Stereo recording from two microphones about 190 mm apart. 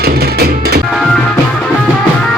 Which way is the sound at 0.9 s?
Centre (ahead or behind).